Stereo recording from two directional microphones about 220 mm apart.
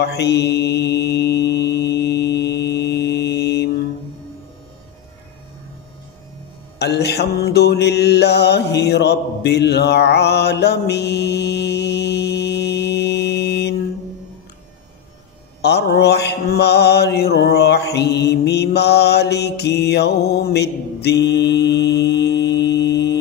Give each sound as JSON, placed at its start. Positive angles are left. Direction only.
{"t": 0.0, "sound": "mantra", "side_deg": 50}
{"t": 6.8, "sound": "mantra", "side_deg": 50}
{"t": 15.6, "sound": "mantra", "side_deg": 50}